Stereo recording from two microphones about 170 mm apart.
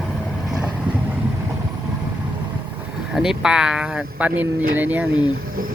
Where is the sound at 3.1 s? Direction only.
5° right (ahead or behind).